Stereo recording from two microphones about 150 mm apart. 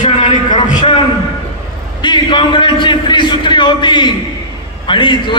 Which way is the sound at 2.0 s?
30° left (ahead or behind).